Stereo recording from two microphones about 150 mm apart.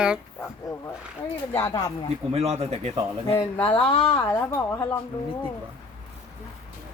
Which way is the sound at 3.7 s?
35° left (ahead or behind).